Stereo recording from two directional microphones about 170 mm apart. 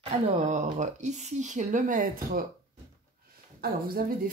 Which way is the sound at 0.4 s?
45° right (ahead or behind).